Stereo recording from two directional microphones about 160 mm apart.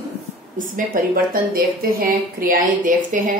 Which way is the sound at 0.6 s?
60° right (ahead or behind).